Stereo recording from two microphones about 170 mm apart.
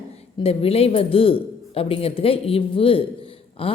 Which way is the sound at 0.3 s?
35° left (ahead or behind).